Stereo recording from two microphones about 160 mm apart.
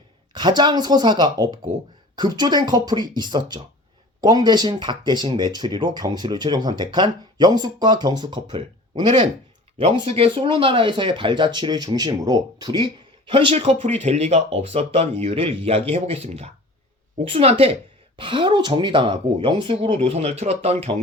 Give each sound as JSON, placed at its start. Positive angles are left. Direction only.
{"t": 0.3, "sound": "speech", "side_deg": -25}